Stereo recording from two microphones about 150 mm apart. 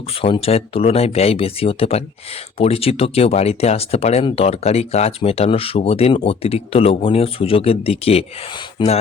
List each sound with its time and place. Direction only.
0.1 s speech: 40° left (ahead or behind)